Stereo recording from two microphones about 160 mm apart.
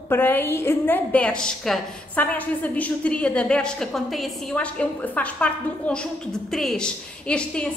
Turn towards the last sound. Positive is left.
turn(degrees=5)  # may be behind; listen again after turning